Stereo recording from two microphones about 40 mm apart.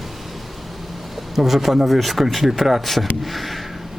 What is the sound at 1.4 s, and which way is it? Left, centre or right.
Speech, centre.